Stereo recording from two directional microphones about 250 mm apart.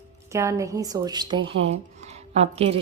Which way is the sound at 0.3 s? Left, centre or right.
Centre.